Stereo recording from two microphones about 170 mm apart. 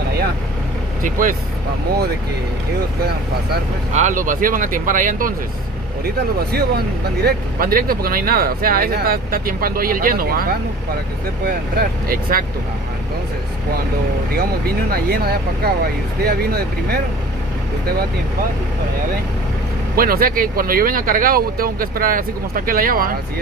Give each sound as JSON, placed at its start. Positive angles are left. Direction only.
{"t": 1.0, "sound": "speech", "side_deg": -50}
{"t": 3.9, "sound": "speech", "side_deg": -50}
{"t": 6.0, "sound": "speech", "side_deg": -70}
{"t": 12.1, "sound": "speech", "side_deg": -55}
{"t": 14.9, "sound": "speech", "side_deg": -65}
{"t": 20.0, "sound": "speech", "side_deg": -60}